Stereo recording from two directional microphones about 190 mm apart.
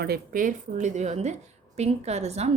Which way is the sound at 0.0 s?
50° right (ahead or behind).